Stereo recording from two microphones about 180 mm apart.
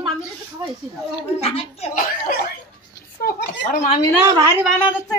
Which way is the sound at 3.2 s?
55° left (ahead or behind).